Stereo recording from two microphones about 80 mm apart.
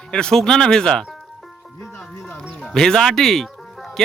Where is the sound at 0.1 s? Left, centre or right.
Centre.